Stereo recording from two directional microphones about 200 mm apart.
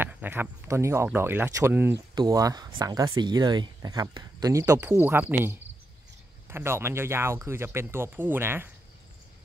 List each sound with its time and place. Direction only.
0.0 s speech: 10° right (ahead or behind)